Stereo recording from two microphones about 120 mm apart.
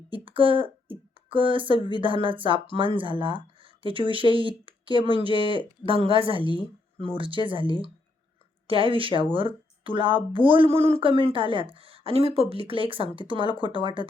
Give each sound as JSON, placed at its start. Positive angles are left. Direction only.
{"t": 0.1, "sound": "speech", "side_deg": -45}